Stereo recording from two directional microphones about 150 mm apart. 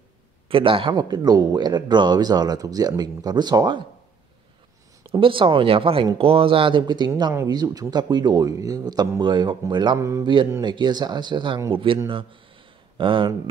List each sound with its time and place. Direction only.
0.5 s speech: 35° right (ahead or behind)
5.1 s speech: 35° right (ahead or behind)
9.9 s speech: 20° right (ahead or behind)
10.6 s speech: 30° right (ahead or behind)